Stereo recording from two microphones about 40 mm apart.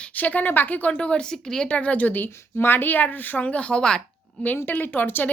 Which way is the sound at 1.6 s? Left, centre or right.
Left.